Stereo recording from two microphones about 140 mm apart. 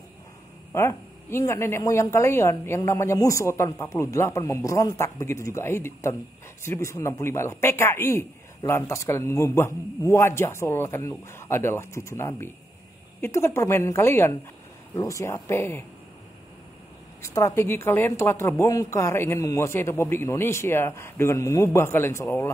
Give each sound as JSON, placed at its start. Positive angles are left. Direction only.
{"t": 0.7, "sound": "a man's voice", "side_deg": 20}
{"t": 17.2, "sound": "a man's voice", "side_deg": 20}